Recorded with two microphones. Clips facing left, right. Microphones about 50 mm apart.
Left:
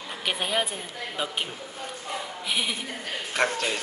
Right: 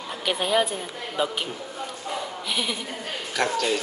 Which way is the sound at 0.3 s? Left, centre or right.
Centre.